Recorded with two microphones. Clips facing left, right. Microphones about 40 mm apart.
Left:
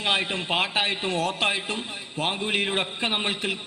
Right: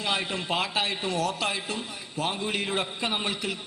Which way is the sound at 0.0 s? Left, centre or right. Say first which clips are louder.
Left 3 dB; left.